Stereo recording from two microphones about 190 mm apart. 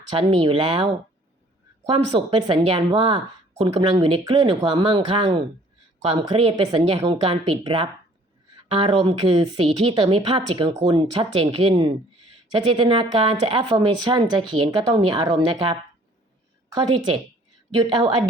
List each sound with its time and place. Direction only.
0.1 s speech: 30° right (ahead or behind)
1.9 s speech: 25° right (ahead or behind)
17.7 s speech: 25° right (ahead or behind)